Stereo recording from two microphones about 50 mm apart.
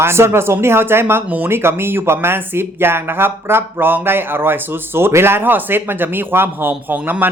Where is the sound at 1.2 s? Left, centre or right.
Right.